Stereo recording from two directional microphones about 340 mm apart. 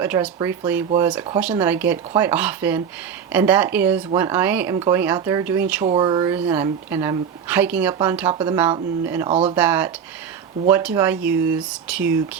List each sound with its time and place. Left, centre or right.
0.0 s a woman's voice: centre
9.6 s speech: centre